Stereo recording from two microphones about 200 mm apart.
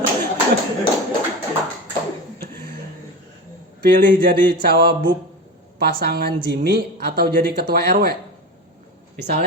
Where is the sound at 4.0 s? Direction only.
45° right (ahead or behind).